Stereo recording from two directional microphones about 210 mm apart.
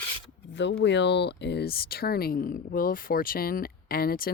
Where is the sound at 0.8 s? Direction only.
55° left (ahead or behind).